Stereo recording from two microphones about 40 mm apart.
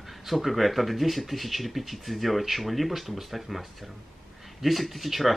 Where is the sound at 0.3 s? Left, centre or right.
Centre.